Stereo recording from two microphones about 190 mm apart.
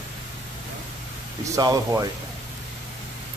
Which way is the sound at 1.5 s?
15° right (ahead or behind).